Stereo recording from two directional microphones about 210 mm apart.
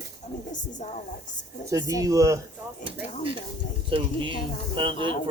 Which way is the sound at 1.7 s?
15° right (ahead or behind).